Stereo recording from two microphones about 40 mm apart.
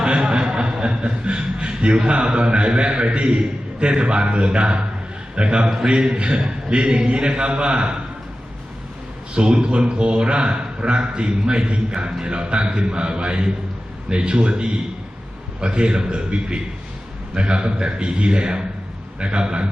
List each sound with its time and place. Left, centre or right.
0.0 s a man's voice: right
9.3 s a man's voice: right